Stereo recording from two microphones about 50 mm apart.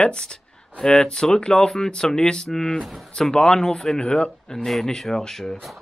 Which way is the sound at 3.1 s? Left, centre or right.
Centre.